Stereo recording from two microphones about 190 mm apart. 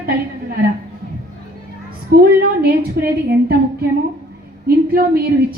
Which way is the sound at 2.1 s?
55° right (ahead or behind).